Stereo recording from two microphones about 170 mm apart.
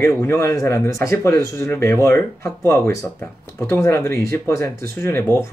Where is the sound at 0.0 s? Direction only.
15° left (ahead or behind).